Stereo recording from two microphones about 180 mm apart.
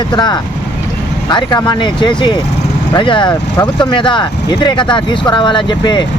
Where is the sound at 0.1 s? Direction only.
25° left (ahead or behind).